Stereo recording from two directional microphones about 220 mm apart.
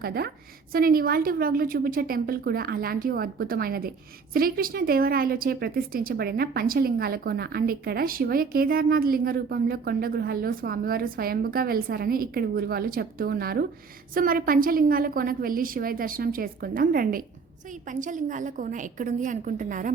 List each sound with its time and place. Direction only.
0.0 s a woman's voice: 45° right (ahead or behind)